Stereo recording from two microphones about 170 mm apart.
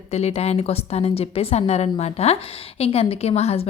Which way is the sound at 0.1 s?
40° left (ahead or behind).